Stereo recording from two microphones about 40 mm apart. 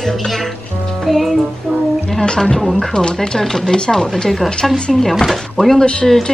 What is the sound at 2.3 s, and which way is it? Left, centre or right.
Speech, centre.